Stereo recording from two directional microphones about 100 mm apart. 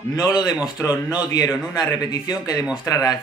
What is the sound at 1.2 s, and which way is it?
A man's voice, 40° left (ahead or behind).